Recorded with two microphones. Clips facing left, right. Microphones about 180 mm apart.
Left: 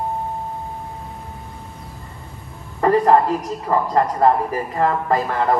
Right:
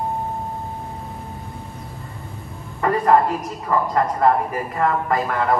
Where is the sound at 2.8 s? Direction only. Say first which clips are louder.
Left 3 dB; 30° left (ahead or behind).